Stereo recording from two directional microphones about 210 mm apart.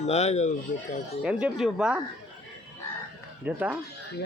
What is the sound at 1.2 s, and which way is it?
Speech, 5° right (ahead or behind).